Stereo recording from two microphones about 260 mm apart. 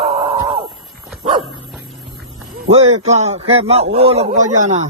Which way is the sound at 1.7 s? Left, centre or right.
Centre.